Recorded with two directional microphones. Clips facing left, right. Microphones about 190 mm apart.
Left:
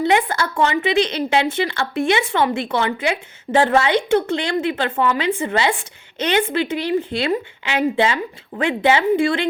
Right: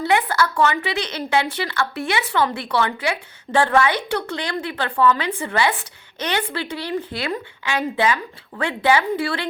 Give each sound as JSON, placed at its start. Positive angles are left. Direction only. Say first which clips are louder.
{"t": 0.0, "sound": "a woman's voice", "louder": "left 1 dB", "side_deg": 25}